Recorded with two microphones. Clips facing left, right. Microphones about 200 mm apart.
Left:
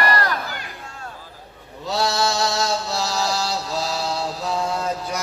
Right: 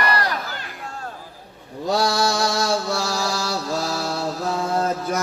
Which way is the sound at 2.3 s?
50° right (ahead or behind).